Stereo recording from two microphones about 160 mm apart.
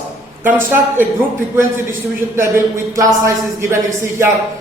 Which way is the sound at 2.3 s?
15° right (ahead or behind).